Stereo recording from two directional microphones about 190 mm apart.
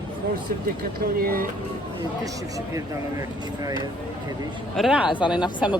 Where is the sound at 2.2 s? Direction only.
15° right (ahead or behind).